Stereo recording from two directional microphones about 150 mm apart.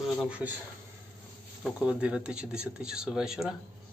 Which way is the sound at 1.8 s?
5° right (ahead or behind).